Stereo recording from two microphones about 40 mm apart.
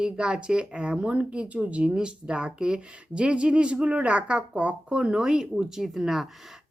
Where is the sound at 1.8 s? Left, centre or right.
Centre.